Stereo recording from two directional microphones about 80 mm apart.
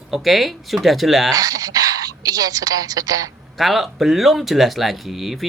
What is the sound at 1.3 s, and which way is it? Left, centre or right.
Speech, right.